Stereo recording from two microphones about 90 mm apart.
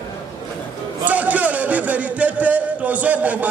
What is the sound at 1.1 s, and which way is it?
A man's voice, 15° right (ahead or behind).